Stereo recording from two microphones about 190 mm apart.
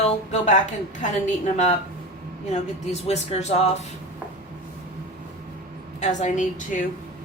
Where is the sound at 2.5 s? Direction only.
35° left (ahead or behind).